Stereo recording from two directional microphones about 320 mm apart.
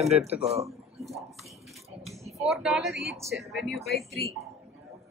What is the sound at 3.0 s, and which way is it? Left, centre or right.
A woman's voice, centre.